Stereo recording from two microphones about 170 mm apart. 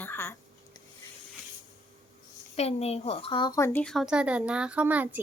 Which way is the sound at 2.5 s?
40° left (ahead or behind).